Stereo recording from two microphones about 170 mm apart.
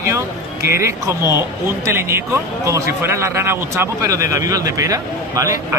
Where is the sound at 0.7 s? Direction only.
15° right (ahead or behind).